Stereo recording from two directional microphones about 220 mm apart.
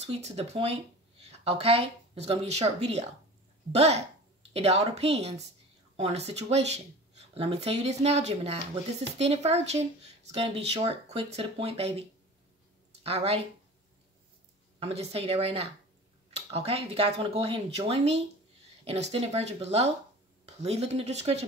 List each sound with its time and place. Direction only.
0.0 s speech: 30° right (ahead or behind)
13.0 s speech: 25° right (ahead or behind)
14.8 s speech: 25° right (ahead or behind)